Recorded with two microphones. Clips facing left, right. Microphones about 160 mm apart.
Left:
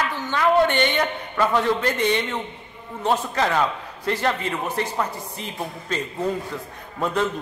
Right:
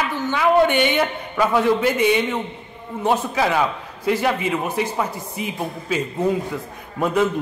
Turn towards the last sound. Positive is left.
turn(degrees=-10)  # may be behind; listen again after turning